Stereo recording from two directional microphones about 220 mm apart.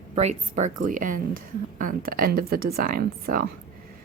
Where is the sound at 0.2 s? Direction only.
30° right (ahead or behind).